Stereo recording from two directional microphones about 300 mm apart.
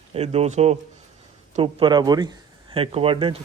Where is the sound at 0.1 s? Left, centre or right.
Centre.